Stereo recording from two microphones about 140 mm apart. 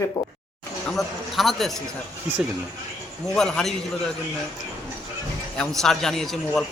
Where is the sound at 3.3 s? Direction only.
5° left (ahead or behind).